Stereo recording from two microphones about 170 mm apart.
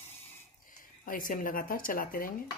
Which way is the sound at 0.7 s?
55° left (ahead or behind).